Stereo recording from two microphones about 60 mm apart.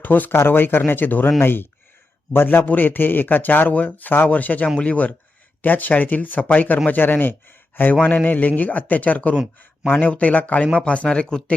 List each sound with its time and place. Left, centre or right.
0.0 s speech: left; by 11.5 s centre